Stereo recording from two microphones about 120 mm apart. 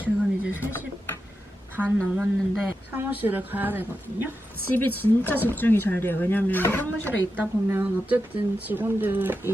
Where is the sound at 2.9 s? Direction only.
15° right (ahead or behind).